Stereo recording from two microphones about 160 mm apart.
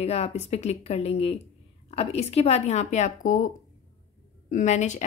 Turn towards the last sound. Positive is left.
turn(degrees=50)  # may be behind; listen again after turning